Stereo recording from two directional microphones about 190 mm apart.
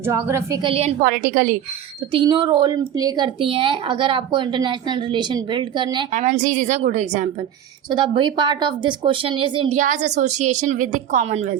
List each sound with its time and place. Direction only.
0.0 s speech: 15° right (ahead or behind)
0.6 s a woman's voice: 30° right (ahead or behind)
1.0 s a woman's voice: 50° right (ahead or behind)
2.1 s a woman's voice: 25° right (ahead or behind)
6.1 s a woman's voice: 45° right (ahead or behind)
7.9 s a woman's voice: 25° right (ahead or behind)
9.7 s a woman's voice: 40° right (ahead or behind)